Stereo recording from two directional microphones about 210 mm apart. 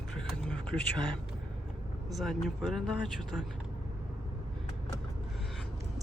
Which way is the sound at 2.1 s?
Centre (ahead or behind).